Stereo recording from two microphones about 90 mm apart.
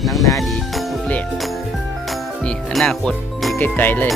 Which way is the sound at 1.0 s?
15° left (ahead or behind).